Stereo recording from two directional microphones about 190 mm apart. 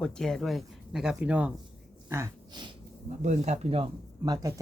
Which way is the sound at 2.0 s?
15° right (ahead or behind).